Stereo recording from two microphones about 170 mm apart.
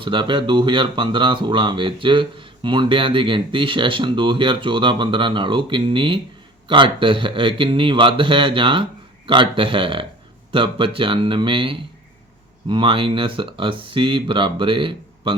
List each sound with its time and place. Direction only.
0.0 s speech: 30° right (ahead or behind)